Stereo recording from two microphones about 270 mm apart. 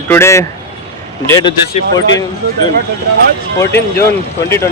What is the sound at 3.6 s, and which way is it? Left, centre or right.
Speech, centre.